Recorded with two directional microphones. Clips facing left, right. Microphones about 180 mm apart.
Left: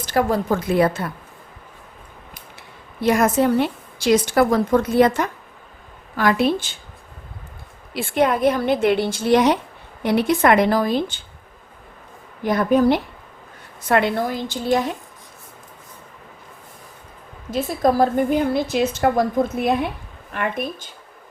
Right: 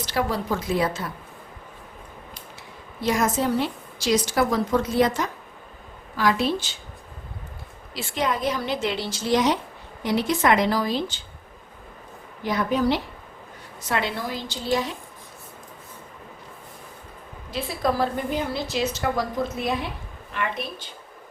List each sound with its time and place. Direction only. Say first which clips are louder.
0.0 s a woman's voice: left 6 dB; 50° left (ahead or behind)
3.0 s a woman's voice: left 6 dB; 60° left (ahead or behind)
7.9 s a woman's voice: left 7 dB; 55° left (ahead or behind)
12.4 s a woman's voice: left 6 dB; 50° left (ahead or behind)
17.5 s a woman's voice: left 6 dB; 45° left (ahead or behind)